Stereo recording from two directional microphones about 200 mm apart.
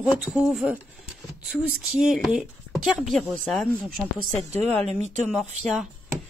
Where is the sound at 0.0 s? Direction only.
5° right (ahead or behind).